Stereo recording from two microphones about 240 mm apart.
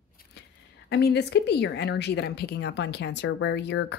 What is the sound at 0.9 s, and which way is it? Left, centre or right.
A woman's voice, left.